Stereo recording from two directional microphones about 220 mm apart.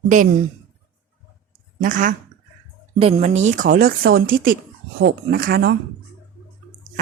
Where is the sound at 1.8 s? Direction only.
35° right (ahead or behind).